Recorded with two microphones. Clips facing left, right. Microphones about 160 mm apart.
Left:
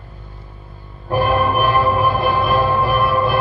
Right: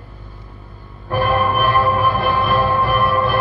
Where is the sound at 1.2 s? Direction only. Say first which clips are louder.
Even; 10° left (ahead or behind).